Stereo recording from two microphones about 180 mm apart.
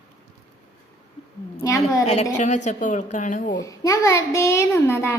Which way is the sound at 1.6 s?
15° left (ahead or behind).